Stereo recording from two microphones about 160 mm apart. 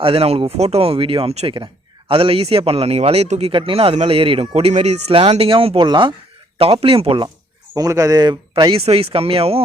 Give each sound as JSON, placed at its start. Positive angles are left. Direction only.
{"t": 0.0, "sound": "a man's voice", "side_deg": -35}
{"t": 7.8, "sound": "a man's voice", "side_deg": -20}